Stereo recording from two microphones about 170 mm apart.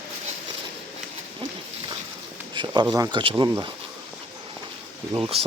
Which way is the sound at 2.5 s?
25° right (ahead or behind).